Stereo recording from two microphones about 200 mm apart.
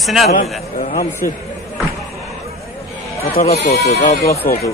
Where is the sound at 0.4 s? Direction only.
40° left (ahead or behind).